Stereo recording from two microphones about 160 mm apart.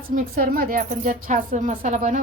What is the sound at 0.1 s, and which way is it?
Speech, 60° right (ahead or behind).